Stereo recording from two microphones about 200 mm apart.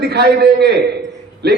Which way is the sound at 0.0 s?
50° right (ahead or behind).